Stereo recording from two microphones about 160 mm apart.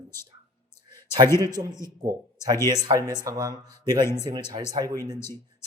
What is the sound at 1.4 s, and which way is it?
Speech, 25° right (ahead or behind).